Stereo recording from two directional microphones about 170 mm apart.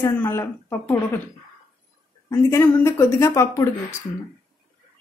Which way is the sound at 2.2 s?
15° left (ahead or behind).